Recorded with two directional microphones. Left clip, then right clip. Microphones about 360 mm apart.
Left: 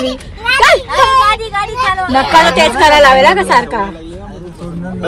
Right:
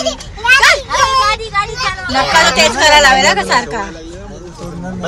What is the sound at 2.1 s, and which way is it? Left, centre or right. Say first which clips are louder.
Speech: left 1 dB; centre.